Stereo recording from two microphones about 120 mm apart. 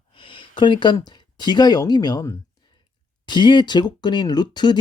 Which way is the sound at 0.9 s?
35° left (ahead or behind).